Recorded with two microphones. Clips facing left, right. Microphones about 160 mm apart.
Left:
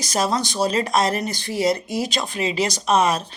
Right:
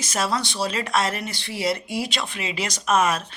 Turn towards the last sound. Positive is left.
turn(degrees=35)  # may be behind; listen again after turning